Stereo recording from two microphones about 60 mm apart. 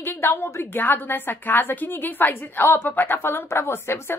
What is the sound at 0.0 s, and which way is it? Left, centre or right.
A woman's voice, left.